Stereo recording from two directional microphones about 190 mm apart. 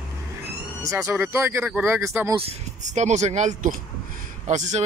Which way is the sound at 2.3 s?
35° right (ahead or behind).